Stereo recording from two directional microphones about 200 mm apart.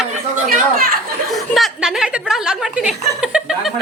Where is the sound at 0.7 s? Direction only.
45° right (ahead or behind).